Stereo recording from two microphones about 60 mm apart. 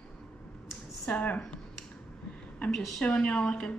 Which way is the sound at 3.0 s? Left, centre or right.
Centre.